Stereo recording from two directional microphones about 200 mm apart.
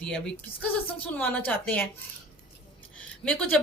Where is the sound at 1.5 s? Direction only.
10° left (ahead or behind).